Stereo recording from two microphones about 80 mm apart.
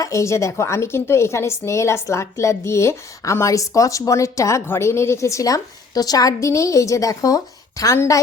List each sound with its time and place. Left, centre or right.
0.0 s a woman's voice: left